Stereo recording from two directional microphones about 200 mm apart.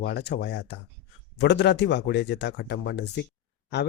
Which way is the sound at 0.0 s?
55° left (ahead or behind).